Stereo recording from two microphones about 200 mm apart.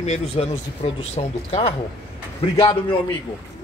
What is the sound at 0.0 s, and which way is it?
A woman's voice, 35° left (ahead or behind).